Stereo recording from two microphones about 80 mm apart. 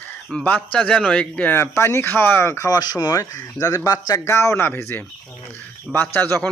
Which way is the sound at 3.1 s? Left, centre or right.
Left.